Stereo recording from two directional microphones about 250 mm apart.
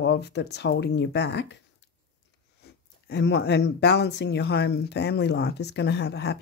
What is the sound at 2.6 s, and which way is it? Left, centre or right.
Speech, left.